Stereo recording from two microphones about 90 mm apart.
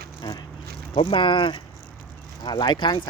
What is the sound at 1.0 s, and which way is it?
Speech, 70° left (ahead or behind).